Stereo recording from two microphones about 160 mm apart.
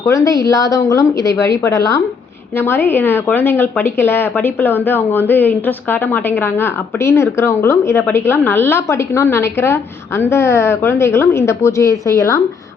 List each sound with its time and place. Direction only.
0.0 s a woman's voice: 20° left (ahead or behind)